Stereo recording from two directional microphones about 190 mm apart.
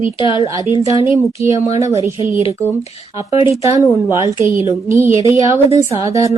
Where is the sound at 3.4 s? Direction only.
15° right (ahead or behind).